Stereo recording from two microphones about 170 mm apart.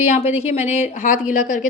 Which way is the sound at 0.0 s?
40° left (ahead or behind).